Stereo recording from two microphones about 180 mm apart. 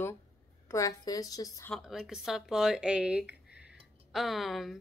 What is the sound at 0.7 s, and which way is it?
A woman's voice, 20° left (ahead or behind).